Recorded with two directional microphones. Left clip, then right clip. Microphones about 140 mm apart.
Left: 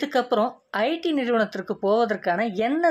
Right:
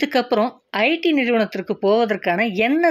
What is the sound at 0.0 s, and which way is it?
Speech, 30° right (ahead or behind).